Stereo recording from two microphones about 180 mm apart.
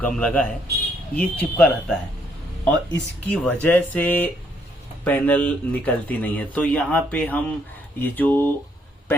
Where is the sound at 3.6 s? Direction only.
10° left (ahead or behind).